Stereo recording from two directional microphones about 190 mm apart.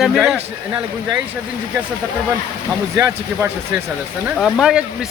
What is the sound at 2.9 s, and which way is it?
Speech, 15° right (ahead or behind).